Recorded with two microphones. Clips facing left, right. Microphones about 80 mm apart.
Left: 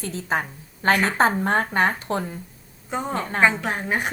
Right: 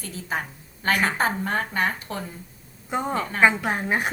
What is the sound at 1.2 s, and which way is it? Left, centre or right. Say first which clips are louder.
A woman's voice: left 5 dB; left.